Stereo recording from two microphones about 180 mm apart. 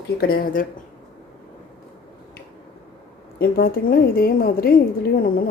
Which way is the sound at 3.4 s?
55° left (ahead or behind).